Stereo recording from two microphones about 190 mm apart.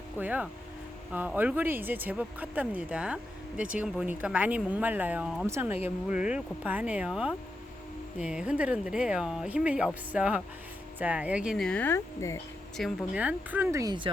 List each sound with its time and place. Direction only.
0.2 s speech: 10° right (ahead or behind); by 12.4 s 15° left (ahead or behind)
12.7 s speech: centre (ahead or behind); by 14.1 s 20° right (ahead or behind)